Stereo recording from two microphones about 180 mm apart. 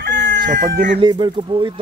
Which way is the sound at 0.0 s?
80° right.